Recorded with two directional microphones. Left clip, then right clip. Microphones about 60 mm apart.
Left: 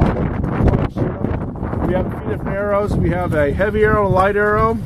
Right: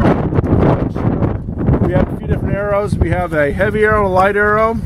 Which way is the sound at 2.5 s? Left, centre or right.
Right.